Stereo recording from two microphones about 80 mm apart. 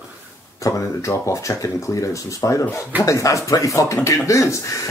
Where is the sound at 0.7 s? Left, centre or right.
Left.